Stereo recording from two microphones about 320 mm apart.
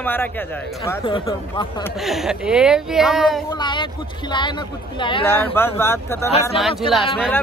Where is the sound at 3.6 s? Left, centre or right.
Centre.